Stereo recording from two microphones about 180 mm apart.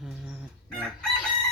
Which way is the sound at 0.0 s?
5° right (ahead or behind).